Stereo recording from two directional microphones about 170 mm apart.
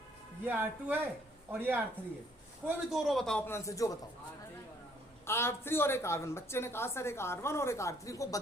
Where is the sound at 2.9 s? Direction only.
Centre (ahead or behind); by 3.9 s 20° left (ahead or behind).